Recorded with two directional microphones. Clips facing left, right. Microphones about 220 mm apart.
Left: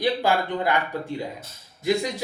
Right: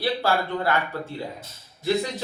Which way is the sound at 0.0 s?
15° left (ahead or behind).